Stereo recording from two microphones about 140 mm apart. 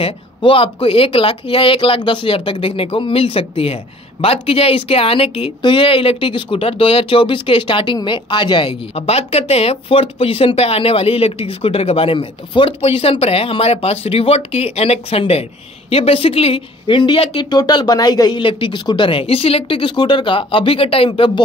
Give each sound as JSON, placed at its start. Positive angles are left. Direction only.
{"t": 0.0, "sound": "speech", "side_deg": 40}